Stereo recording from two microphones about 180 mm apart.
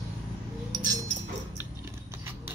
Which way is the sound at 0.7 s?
20° right (ahead or behind).